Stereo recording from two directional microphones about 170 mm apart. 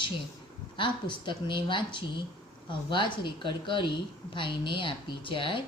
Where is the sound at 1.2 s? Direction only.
30° left (ahead or behind).